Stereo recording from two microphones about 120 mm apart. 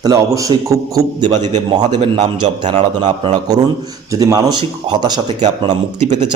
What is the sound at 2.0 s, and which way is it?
Speech, 70° right (ahead or behind).